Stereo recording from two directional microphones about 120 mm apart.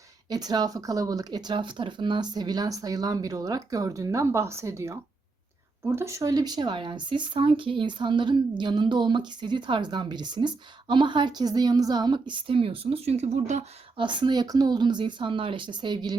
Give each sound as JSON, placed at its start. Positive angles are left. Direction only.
{"t": 0.3, "sound": "speech", "side_deg": -35}
{"t": 13.9, "sound": "speech", "side_deg": -40}